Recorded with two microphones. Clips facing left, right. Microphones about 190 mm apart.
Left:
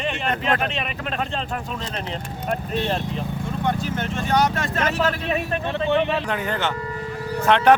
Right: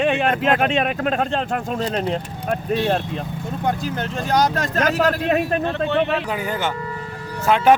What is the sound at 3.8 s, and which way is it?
Speech, 40° right (ahead or behind).